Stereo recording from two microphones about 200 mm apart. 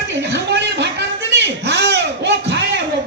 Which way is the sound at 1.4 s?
55° right (ahead or behind).